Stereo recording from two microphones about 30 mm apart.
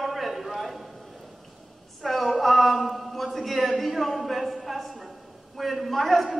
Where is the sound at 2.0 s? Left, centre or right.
Centre.